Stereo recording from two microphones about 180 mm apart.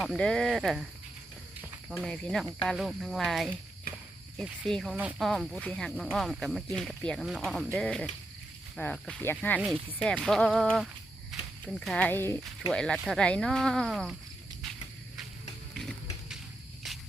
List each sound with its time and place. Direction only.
0.0 s speech: centre (ahead or behind)
1.9 s speech: 5° left (ahead or behind)
9.6 s speech: 5° right (ahead or behind)
15.7 s music: centre (ahead or behind)